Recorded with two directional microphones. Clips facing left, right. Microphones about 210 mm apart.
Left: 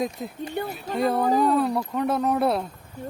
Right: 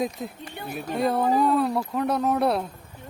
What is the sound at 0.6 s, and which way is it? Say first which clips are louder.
Speech: left 8 dB; 45° left (ahead or behind).